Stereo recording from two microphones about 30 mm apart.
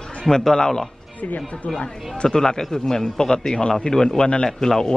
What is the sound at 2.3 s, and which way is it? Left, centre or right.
A man's voice, centre.